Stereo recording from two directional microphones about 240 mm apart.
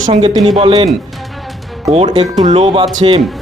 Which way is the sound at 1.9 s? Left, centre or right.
Right.